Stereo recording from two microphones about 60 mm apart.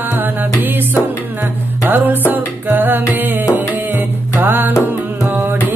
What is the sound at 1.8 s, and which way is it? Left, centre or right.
Music, right.